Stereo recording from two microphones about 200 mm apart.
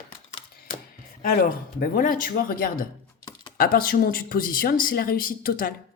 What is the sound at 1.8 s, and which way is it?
Speech, 45° left (ahead or behind).